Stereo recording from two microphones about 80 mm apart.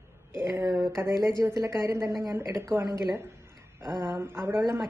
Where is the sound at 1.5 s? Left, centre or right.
Right.